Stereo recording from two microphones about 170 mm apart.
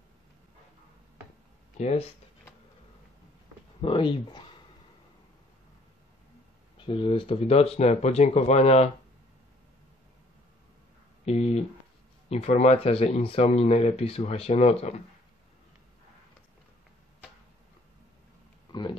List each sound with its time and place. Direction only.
1.8 s speech: 40° left (ahead or behind)
3.8 s speech: 30° left (ahead or behind)
6.9 s speech: 30° left (ahead or behind)
11.2 s speech: 40° left (ahead or behind)
18.7 s a sound: 30° left (ahead or behind)